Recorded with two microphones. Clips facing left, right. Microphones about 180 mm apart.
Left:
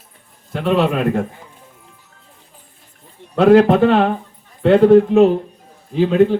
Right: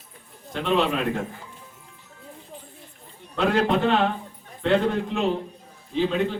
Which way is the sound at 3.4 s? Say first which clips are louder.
Left 11 dB; 45° left (ahead or behind).